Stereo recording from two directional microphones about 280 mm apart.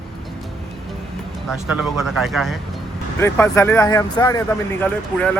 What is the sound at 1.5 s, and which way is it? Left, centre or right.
A man's voice, centre.